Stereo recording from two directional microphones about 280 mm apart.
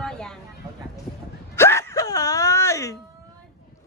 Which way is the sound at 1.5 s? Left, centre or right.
Centre.